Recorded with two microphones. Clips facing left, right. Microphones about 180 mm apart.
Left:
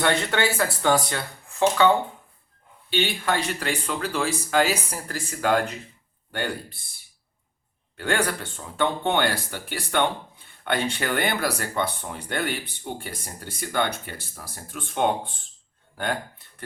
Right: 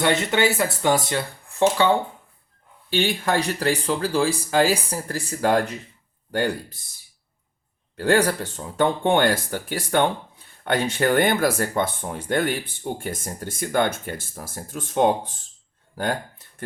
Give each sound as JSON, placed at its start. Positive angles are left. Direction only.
{"t": 0.0, "sound": "speech", "side_deg": -20}
{"t": 2.9, "sound": "speech", "side_deg": -45}
{"t": 7.9, "sound": "speech", "side_deg": -40}